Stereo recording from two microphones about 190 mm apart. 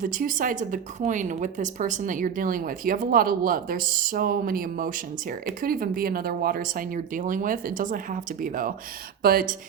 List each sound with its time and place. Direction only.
0.0 s a woman's voice: 45° right (ahead or behind)